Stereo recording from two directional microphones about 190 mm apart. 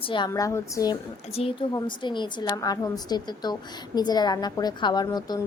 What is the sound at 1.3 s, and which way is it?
A woman's voice, 30° left (ahead or behind).